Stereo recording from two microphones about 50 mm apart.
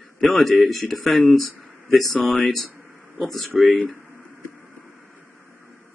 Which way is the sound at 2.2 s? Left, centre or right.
Left.